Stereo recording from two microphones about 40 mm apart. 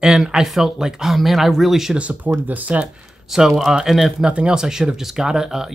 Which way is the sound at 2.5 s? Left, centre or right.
Right.